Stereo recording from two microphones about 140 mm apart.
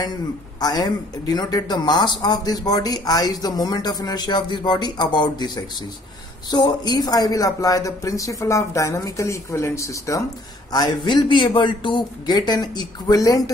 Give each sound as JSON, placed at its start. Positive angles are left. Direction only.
{"t": 0.0, "sound": "a man's voice", "side_deg": 30}